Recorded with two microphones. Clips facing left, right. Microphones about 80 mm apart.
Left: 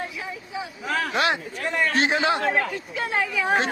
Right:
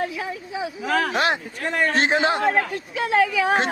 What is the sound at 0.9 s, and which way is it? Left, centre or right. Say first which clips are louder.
Speech: right 4 dB; right.